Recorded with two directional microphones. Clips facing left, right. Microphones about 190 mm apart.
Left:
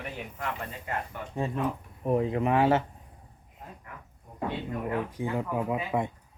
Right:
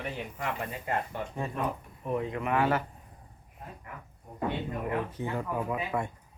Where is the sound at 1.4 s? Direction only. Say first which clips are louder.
Left 5 dB; 25° left (ahead or behind).